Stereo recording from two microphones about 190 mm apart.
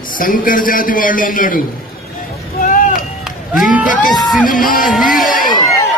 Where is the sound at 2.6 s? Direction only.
45° left (ahead or behind).